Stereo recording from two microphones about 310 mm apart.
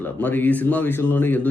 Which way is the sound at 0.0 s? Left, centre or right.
Centre.